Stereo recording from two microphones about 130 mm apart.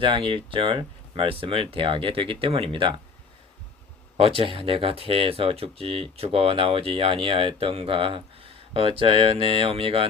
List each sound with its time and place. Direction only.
0.0 s speech: 40° right (ahead or behind)
4.2 s speech: 45° right (ahead or behind)